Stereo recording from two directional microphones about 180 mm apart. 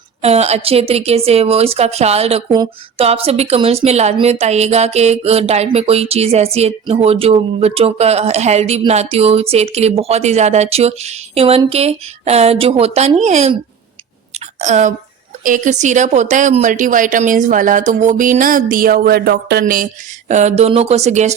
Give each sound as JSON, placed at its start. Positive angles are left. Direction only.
{"t": 0.2, "sound": "speech", "side_deg": -35}
{"t": 14.3, "sound": "a sound", "side_deg": -40}
{"t": 15.4, "sound": "a woman's voice", "side_deg": -45}